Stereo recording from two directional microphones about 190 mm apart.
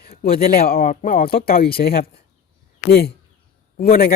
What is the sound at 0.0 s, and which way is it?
Speech, 50° left (ahead or behind).